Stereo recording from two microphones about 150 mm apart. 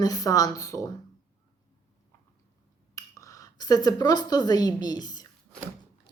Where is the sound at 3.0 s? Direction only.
20° left (ahead or behind).